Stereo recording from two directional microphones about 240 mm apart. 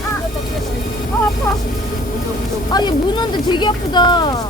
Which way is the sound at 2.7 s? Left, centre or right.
Centre.